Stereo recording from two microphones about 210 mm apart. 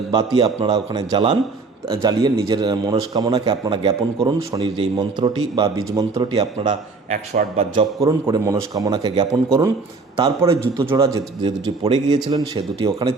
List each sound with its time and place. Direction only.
0.1 s a man's voice: 20° right (ahead or behind)
6.7 s a man's voice: 35° right (ahead or behind)
8.0 s a man's voice: 15° right (ahead or behind)